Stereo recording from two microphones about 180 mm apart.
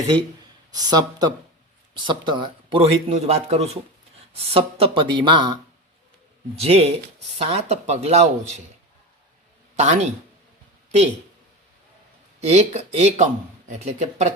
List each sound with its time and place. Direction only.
0.7 s speech: 20° right (ahead or behind)
6.6 s speech: 35° right (ahead or behind)
9.7 s speech: 40° right (ahead or behind)
12.4 s speech: 35° right (ahead or behind)